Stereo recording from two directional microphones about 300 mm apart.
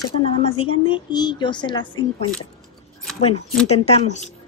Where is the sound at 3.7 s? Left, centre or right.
Left.